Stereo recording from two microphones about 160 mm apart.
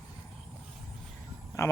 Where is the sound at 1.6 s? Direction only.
15° left (ahead or behind).